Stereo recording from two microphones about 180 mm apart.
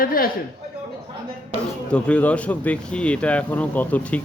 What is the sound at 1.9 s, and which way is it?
Speech, 5° left (ahead or behind).